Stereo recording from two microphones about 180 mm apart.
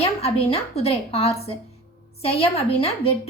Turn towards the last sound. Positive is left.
turn(degrees=35)  # may be behind; listen again after turning